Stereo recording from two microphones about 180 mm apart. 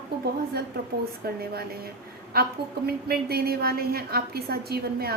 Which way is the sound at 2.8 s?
60° right (ahead or behind).